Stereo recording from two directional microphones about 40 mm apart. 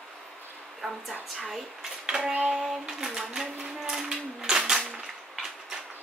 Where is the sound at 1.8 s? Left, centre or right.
Centre.